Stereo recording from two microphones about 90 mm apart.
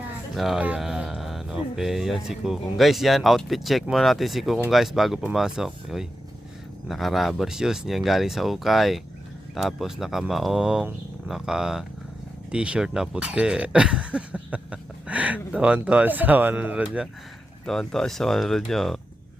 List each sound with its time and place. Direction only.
0.3 s speech: 5° right (ahead or behind)
17.7 s speech: 5° left (ahead or behind)